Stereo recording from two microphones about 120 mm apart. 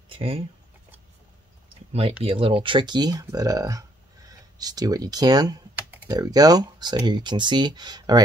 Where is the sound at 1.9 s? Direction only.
55° right (ahead or behind).